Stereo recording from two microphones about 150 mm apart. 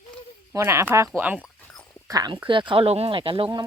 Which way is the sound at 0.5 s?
20° right (ahead or behind).